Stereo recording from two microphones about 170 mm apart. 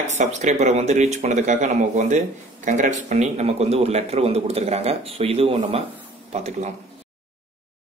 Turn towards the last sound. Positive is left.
turn(degrees=-40)  # may be behind; listen again after turning